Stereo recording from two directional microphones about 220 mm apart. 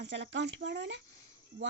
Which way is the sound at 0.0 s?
55° right (ahead or behind).